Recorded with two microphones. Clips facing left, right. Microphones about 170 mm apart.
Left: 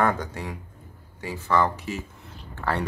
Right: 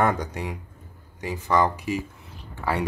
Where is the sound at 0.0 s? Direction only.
15° right (ahead or behind).